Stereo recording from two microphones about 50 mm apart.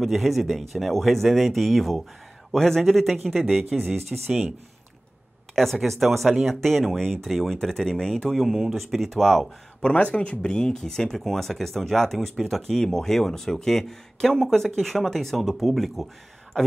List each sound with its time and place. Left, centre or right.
0.0 s speech: centre
5.5 s speech: centre
9.8 s speech: left
10.5 s speech: centre